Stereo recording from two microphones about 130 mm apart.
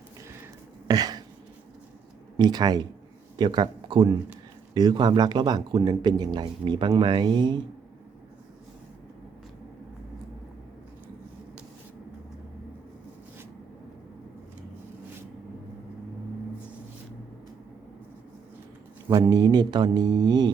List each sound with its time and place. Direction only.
0.9 s a sound: 30° right (ahead or behind)
2.4 s speech: 30° right (ahead or behind)
19.1 s speech: 30° right (ahead or behind)